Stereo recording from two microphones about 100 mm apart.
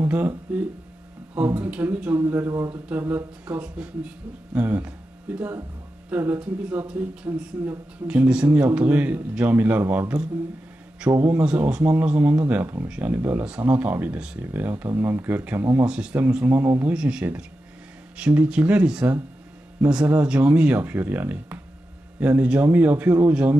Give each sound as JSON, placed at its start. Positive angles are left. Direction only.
{"t": 1.3, "sound": "speech", "side_deg": -20}
{"t": 3.6, "sound": "speech", "side_deg": -10}
{"t": 8.1, "sound": "speech", "side_deg": -15}
{"t": 11.2, "sound": "speech", "side_deg": -20}
{"t": 15.8, "sound": "speech", "side_deg": -10}
{"t": 16.9, "sound": "speech", "side_deg": -10}
{"t": 20.2, "sound": "speech", "side_deg": -15}